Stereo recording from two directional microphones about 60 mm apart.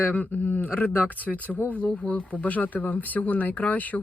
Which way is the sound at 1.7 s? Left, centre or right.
Left.